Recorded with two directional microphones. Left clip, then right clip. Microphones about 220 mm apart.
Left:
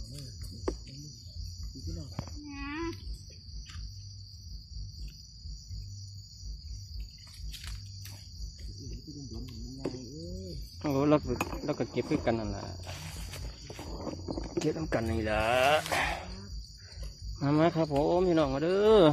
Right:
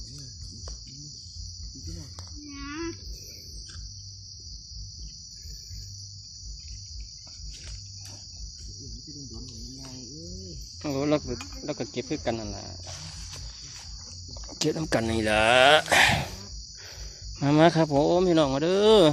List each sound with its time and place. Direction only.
2.5 s cricket: 35° left (ahead or behind)
10.8 s cricket: centre (ahead or behind)
14.6 s speech: 30° right (ahead or behind)
17.4 s speech: 30° right (ahead or behind)
17.7 s speech: 40° right (ahead or behind)